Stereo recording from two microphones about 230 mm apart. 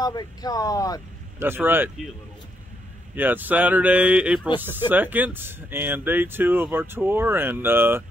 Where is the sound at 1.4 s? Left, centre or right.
Centre.